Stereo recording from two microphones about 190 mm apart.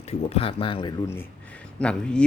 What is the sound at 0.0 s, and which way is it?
Speech, 35° left (ahead or behind).